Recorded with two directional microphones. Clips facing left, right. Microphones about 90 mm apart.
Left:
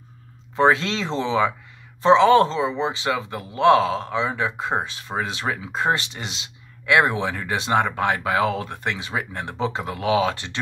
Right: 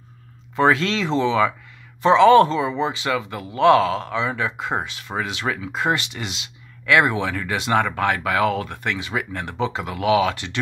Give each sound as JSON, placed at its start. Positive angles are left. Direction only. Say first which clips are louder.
{"t": 0.6, "sound": "speech", "louder": "even", "side_deg": 25}